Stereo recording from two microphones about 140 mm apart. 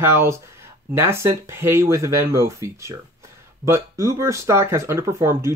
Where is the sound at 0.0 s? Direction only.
15° right (ahead or behind).